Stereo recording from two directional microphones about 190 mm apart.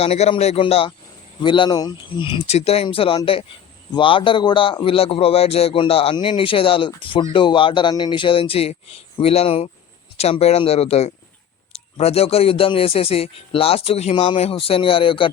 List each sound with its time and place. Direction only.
0.0 s a man's voice: 30° left (ahead or behind)